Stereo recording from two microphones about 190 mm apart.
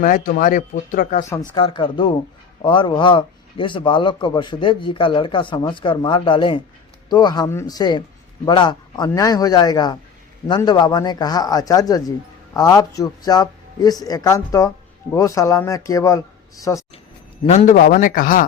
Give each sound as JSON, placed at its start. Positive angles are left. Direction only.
{"t": 0.0, "sound": "speech", "side_deg": 50}
{"t": 1.3, "sound": "a man's voice", "side_deg": 25}
{"t": 17.4, "sound": "speech", "side_deg": 35}